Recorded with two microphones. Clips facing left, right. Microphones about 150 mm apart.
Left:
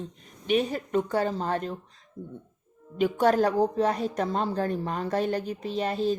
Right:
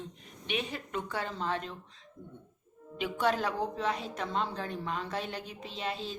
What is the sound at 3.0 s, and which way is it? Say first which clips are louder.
A woman's voice: left 8 dB; 45° left (ahead or behind).